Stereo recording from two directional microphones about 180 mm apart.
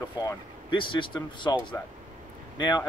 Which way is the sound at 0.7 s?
25° left (ahead or behind).